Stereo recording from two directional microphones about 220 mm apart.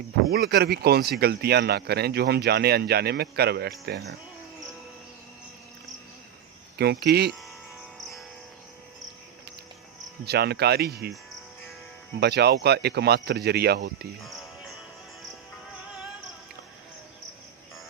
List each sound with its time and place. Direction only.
0.3 s speech: 45° right (ahead or behind)
6.7 s speech: 50° right (ahead or behind)
10.2 s speech: 45° right (ahead or behind)
12.2 s speech: 50° right (ahead or behind)
14.3 s music: centre (ahead or behind)